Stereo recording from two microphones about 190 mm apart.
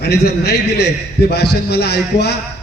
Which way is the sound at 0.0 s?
60° left (ahead or behind).